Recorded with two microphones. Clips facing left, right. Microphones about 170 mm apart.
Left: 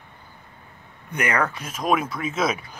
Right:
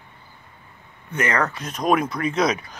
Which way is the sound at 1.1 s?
10° left (ahead or behind).